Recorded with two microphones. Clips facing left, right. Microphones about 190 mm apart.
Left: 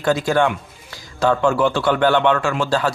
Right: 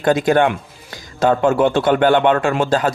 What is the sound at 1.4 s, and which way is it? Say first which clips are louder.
Speech: right 3 dB; 20° right (ahead or behind).